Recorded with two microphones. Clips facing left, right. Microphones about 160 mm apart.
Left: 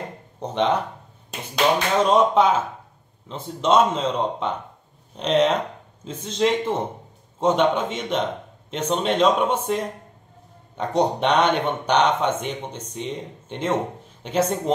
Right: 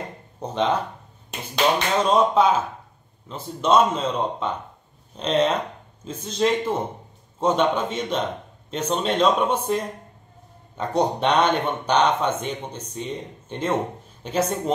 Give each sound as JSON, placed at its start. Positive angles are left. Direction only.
{"t": 0.4, "sound": "a man's voice", "side_deg": 20}
{"t": 2.0, "sound": "a man's voice", "side_deg": 20}
{"t": 10.8, "sound": "a man's voice", "side_deg": 20}